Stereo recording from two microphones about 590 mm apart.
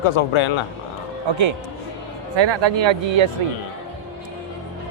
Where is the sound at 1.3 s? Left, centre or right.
Right.